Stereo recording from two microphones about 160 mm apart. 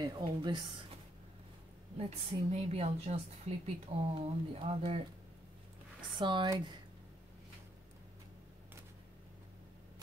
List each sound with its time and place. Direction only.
0.0 s a woman's voice: 30° right (ahead or behind)
2.0 s a woman's voice: 40° right (ahead or behind)
6.1 s a woman's voice: 30° right (ahead or behind)